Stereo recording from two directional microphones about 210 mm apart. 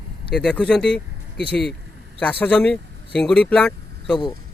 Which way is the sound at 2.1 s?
5° left (ahead or behind).